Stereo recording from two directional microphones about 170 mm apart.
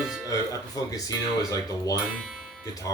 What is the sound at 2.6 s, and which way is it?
Speech, 20° left (ahead or behind).